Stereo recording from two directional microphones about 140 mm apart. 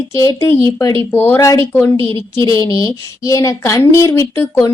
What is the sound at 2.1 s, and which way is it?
Speech, 35° right (ahead or behind).